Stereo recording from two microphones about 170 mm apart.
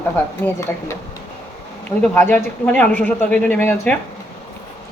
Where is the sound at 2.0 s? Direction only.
5° left (ahead or behind).